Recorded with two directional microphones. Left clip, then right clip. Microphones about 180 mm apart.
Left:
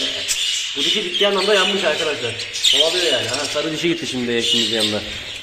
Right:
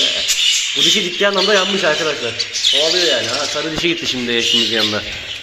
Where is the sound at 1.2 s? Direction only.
10° right (ahead or behind).